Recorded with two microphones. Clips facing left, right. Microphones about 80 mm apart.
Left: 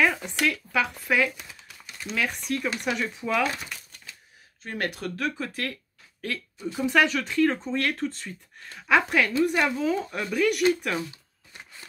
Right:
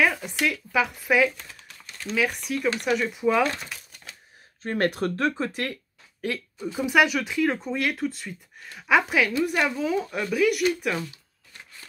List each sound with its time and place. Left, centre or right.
0.0 s speech: centre
1.3 s typing: centre
2.1 s speech: centre
4.6 s speech: right
5.5 s speech: centre
11.0 s a sound: centre